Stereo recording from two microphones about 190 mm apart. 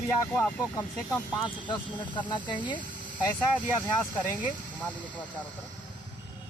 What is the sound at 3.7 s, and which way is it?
Speech, 10° left (ahead or behind).